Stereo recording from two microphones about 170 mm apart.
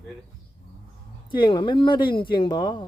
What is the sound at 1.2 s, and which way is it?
Speech, 25° left (ahead or behind).